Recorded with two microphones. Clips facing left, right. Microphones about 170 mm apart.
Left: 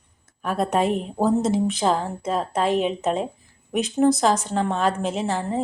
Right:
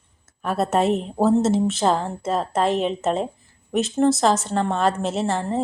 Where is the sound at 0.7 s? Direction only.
10° left (ahead or behind).